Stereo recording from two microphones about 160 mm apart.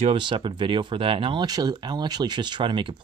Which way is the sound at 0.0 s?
30° right (ahead or behind).